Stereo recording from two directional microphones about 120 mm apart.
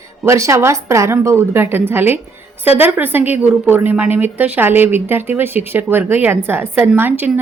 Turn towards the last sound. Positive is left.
turn(degrees=-15)  # may be behind; listen again after turning